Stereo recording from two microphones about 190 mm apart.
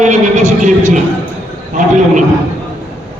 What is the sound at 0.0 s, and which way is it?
Neigh, 40° right (ahead or behind).